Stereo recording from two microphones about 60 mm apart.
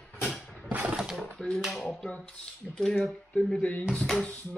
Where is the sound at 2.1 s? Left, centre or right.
Centre.